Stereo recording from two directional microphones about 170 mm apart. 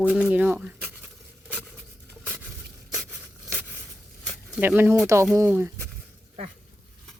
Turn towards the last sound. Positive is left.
turn(degrees=-15)  # may be behind; listen again after turning